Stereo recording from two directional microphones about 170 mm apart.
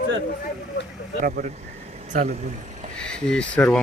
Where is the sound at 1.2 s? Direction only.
50° right (ahead or behind).